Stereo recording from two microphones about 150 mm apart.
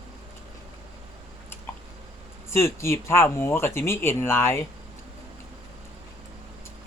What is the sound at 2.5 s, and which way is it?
Speech, 15° left (ahead or behind).